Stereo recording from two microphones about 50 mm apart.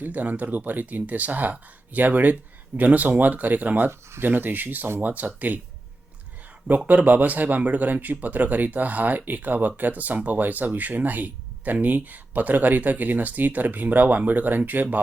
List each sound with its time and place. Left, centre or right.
0.0 s speech: right
6.7 s speech: right